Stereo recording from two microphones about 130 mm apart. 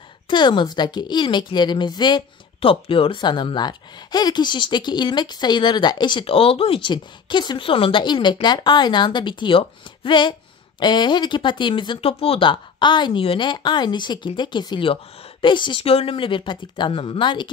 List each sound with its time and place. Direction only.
0.3 s a woman's voice: 35° left (ahead or behind)